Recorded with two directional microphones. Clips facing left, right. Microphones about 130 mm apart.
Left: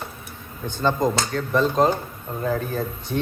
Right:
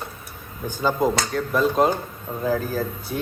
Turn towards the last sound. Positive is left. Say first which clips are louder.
# even
turn(degrees=0)  # may be behind; listen again after turning